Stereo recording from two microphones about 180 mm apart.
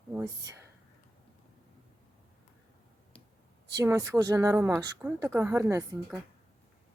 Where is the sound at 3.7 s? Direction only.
20° right (ahead or behind).